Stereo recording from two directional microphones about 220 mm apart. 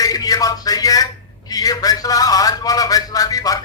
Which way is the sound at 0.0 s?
15° left (ahead or behind).